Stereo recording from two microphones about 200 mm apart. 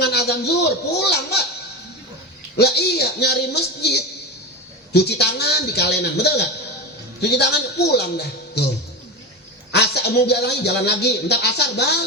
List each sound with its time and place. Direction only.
0.0 s speech: 55° left (ahead or behind)
2.6 s speech: 55° left (ahead or behind)
9.7 s speech: 55° left (ahead or behind)